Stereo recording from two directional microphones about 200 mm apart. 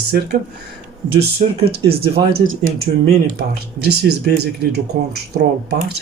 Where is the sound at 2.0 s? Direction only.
30° right (ahead or behind).